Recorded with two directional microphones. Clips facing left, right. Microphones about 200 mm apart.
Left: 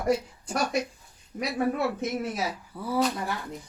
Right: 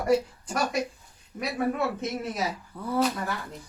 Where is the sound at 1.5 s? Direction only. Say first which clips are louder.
Left 1 dB; 15° left (ahead or behind).